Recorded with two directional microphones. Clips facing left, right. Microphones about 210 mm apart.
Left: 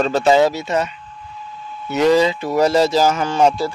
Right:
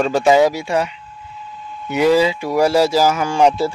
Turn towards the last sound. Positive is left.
turn(degrees=-10)  # may be behind; listen again after turning